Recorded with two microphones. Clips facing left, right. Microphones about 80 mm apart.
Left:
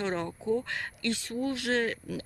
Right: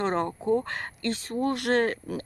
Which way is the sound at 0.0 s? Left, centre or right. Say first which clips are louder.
Right 5 dB; right.